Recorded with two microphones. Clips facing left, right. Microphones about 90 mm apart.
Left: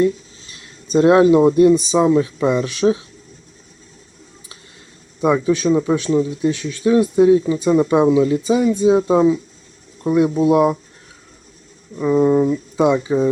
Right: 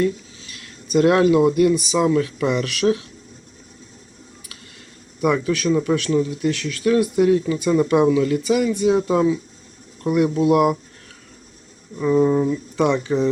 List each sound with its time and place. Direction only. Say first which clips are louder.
0.0 s a sound: left 4 dB; 25° left (ahead or behind)
1.4 s speech: left 4 dB; 30° left (ahead or behind)
5.2 s speech: left 3 dB; 20° left (ahead or behind)
11.9 s speech: left 2 dB; 10° left (ahead or behind)